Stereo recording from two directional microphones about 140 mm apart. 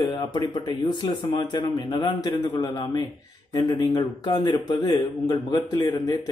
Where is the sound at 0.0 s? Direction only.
30° left (ahead or behind).